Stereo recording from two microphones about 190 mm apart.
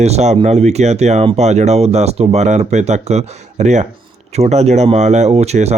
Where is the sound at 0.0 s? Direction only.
35° right (ahead or behind).